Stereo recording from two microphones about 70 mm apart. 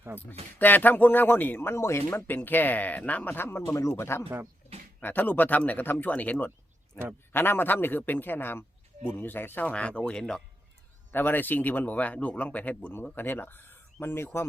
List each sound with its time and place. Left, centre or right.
0.2 s speech: left
1.7 s speech: left
3.2 s speech: left
3.8 s speech: left
4.9 s speech: left
9.6 s speech: centre
11.1 s speech: left